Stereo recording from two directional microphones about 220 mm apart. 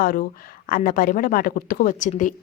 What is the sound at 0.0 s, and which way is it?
A woman's voice, 40° left (ahead or behind).